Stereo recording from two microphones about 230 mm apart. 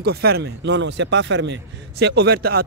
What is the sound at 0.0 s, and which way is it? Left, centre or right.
A man's voice, right.